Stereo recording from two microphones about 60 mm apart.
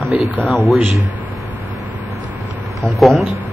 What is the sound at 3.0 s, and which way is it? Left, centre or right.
Speech, centre.